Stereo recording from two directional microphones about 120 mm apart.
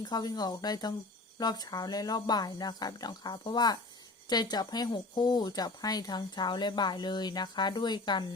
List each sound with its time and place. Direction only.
0.0 s speech: 35° left (ahead or behind)